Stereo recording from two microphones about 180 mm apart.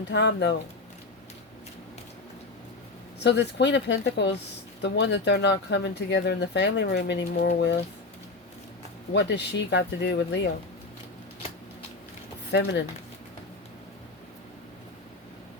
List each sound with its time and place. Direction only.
0.1 s speech: 75° left (ahead or behind)
3.2 s speech: 70° left (ahead or behind)
9.1 s speech: 70° left (ahead or behind)
12.5 s speech: 70° left (ahead or behind)